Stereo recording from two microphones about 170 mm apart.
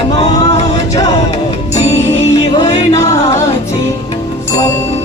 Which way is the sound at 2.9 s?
20° left (ahead or behind).